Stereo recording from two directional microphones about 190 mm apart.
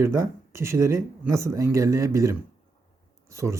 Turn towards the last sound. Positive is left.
turn(degrees=-15)  # may be behind; listen again after turning